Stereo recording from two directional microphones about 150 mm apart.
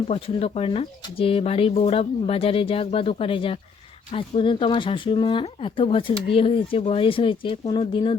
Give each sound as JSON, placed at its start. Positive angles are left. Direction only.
{"t": 0.1, "sound": "speech", "side_deg": 40}